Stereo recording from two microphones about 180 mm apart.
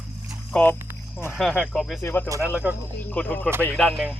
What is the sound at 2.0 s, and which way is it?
Speech, 15° left (ahead or behind).